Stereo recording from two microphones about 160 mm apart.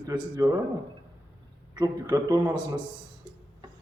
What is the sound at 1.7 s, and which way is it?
Speech, 25° right (ahead or behind).